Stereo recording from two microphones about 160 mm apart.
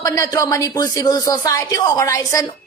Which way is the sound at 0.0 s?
20° left (ahead or behind).